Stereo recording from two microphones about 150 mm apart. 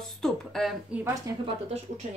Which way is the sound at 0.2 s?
Centre (ahead or behind).